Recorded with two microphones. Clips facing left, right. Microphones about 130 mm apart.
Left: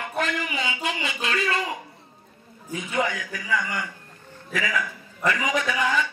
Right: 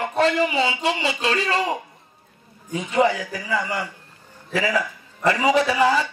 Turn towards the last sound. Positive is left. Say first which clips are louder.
# right 6 dB
turn(degrees=-35)  # may be behind; listen again after turning